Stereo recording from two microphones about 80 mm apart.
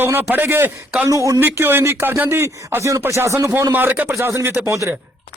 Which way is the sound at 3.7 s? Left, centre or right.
Right.